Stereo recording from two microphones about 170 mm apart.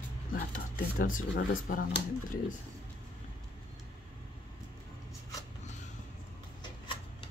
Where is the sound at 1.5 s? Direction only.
55° left (ahead or behind).